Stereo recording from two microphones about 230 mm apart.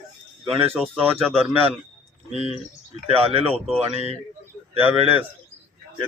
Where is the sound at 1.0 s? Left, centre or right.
Centre.